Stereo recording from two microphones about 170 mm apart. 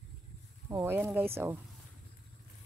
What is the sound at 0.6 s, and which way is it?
Speech, 15° right (ahead or behind).